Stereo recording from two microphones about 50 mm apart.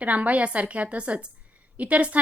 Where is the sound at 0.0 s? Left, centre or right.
Right.